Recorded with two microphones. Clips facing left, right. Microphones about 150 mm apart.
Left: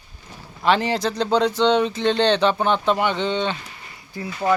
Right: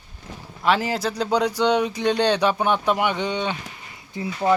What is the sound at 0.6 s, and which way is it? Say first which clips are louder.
Speech: left 2 dB; 5° right (ahead or behind).